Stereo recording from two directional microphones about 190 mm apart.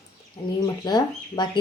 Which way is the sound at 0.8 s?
20° left (ahead or behind).